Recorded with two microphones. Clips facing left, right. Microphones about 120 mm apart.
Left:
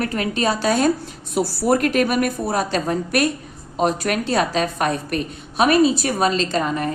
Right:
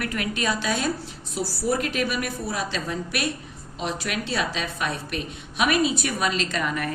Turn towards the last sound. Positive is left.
turn(degrees=30)  # may be behind; listen again after turning